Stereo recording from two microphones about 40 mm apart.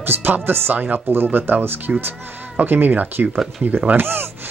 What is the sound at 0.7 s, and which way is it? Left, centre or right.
Speech, right.